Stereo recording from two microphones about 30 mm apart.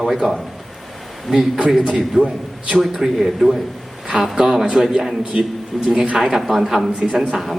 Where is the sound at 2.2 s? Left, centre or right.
Right.